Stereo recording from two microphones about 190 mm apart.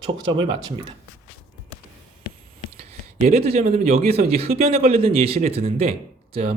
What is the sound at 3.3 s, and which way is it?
Speech, 35° right (ahead or behind).